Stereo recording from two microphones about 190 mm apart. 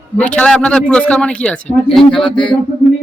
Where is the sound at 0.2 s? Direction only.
5° left (ahead or behind).